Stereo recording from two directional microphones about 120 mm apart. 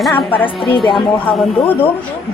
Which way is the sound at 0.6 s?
40° left (ahead or behind).